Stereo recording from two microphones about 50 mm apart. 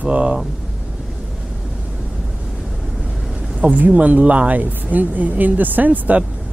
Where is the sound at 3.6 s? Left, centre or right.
Right.